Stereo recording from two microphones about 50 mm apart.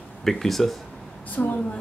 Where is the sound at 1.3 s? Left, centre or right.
Left.